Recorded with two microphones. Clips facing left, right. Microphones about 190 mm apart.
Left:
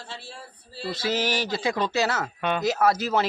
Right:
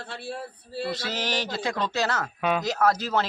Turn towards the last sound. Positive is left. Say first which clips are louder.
# left 1 dB
turn(degrees=5)  # may be behind; listen again after turning